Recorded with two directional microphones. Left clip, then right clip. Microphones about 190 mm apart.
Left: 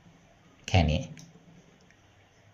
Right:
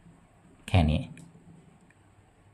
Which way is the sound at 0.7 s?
10° right (ahead or behind).